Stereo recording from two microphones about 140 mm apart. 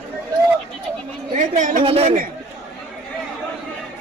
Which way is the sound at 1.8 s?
45° right (ahead or behind).